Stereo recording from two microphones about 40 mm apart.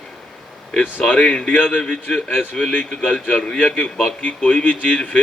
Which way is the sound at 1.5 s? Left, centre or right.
Left.